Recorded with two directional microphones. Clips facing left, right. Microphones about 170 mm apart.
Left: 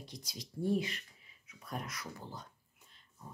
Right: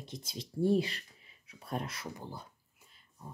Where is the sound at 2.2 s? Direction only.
10° right (ahead or behind).